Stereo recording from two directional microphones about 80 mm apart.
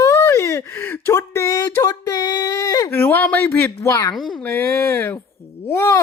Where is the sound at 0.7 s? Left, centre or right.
Left.